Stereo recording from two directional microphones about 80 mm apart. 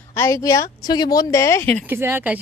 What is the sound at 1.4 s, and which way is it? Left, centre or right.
Speech, left.